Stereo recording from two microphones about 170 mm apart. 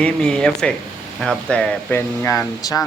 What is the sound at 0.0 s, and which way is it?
A man's voice, 5° left (ahead or behind).